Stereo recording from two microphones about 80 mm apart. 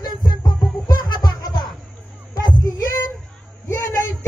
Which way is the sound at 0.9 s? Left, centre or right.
Left.